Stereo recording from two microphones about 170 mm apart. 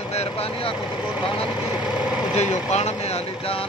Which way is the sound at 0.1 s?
40° left (ahead or behind).